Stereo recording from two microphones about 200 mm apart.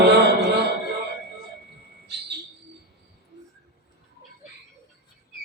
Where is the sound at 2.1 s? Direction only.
55° right (ahead or behind).